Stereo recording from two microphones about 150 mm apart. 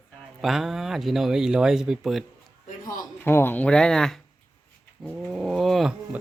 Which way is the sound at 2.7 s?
65° left (ahead or behind).